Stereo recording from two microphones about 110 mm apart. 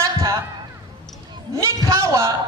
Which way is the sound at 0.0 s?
30° right (ahead or behind).